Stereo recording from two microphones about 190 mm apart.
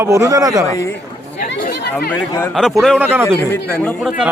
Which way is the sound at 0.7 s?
15° left (ahead or behind).